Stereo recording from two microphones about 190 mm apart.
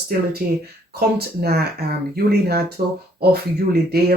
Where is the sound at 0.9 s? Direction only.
55° right (ahead or behind).